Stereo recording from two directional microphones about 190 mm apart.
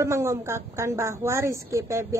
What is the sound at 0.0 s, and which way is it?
A woman's voice, 15° right (ahead or behind).